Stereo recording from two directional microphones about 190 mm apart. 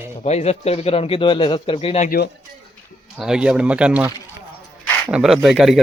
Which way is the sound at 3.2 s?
5° right (ahead or behind).